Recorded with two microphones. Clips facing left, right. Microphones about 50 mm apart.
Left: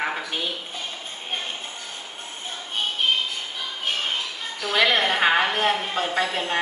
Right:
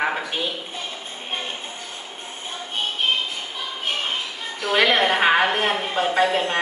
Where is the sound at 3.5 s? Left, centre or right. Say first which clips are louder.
Right 2 dB; centre.